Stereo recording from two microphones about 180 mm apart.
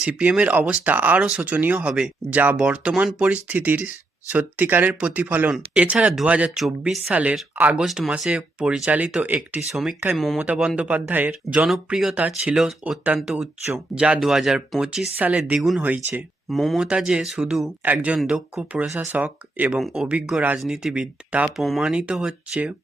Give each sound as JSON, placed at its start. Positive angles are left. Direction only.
{"t": 0.0, "sound": "speech", "side_deg": -5}